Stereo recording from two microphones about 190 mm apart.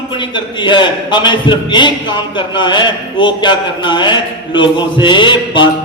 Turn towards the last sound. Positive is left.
turn(degrees=25)  # may be behind; listen again after turning